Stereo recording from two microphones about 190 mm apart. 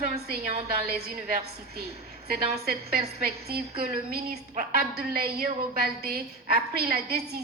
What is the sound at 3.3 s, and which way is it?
A woman's voice, 55° right (ahead or behind).